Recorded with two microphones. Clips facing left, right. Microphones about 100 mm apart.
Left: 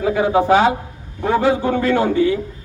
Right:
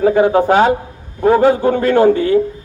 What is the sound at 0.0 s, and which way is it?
A man's voice, 45° right (ahead or behind).